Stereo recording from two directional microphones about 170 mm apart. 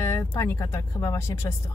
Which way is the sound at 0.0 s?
15° left (ahead or behind).